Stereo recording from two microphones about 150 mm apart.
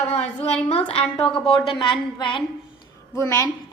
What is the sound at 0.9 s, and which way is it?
A woman's voice, 40° left (ahead or behind).